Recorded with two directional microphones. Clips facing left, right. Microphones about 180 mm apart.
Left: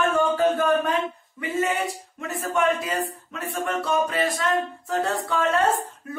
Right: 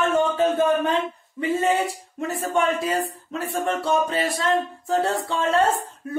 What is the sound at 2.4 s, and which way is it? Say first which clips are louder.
Speech: even; 30° right (ahead or behind).